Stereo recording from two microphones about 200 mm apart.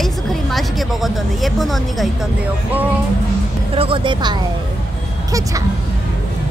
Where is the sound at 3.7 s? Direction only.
25° right (ahead or behind).